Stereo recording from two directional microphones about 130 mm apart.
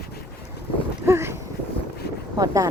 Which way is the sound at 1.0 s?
20° right (ahead or behind).